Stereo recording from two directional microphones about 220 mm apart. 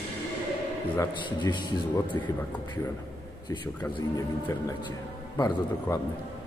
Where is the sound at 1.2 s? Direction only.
20° left (ahead or behind).